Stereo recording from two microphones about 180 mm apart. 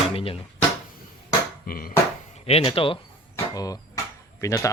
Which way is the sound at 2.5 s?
30° left (ahead or behind).